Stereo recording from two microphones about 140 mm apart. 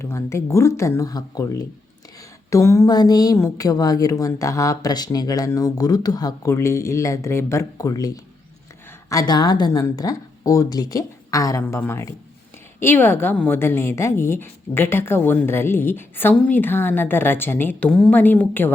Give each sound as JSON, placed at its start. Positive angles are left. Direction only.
{"t": 0.0, "sound": "a woman's voice", "side_deg": 20}